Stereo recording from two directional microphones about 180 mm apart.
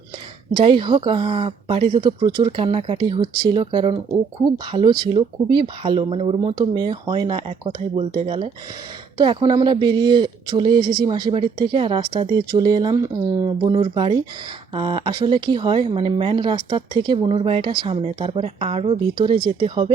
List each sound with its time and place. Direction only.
0.5 s speech: 30° right (ahead or behind)
9.1 s speech: 25° right (ahead or behind)